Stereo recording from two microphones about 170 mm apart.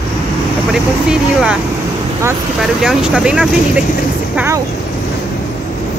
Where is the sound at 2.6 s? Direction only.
5° right (ahead or behind).